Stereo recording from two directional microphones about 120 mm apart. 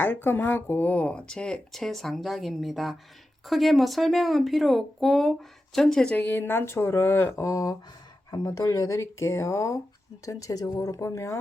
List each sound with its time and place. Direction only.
0.0 s speech: 15° left (ahead or behind)